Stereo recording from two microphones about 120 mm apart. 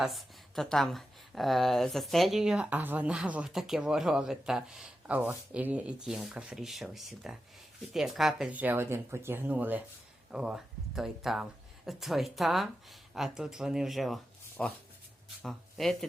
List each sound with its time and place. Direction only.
0.0 s a woman's voice: centre (ahead or behind)
8.5 s a woman's voice: 15° right (ahead or behind); by 16.0 s centre (ahead or behind)